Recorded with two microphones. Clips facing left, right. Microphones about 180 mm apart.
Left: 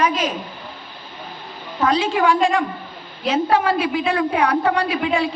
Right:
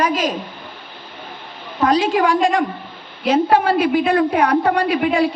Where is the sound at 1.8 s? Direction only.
40° right (ahead or behind).